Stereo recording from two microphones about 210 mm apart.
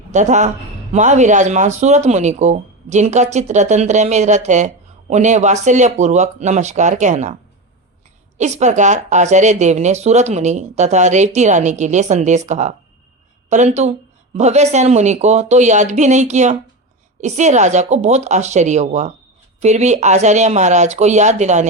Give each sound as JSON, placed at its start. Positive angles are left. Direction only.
{"t": 0.1, "sound": "a woman's voice", "side_deg": -35}
{"t": 8.4, "sound": "speech", "side_deg": -35}